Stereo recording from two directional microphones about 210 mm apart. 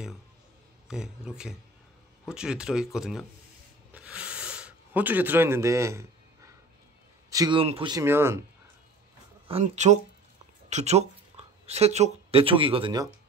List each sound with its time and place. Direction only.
0.8 s speech: 5° right (ahead or behind)
3.9 s a sound: 5° right (ahead or behind)
7.2 s speech: 20° right (ahead or behind)
9.5 s speech: 30° right (ahead or behind)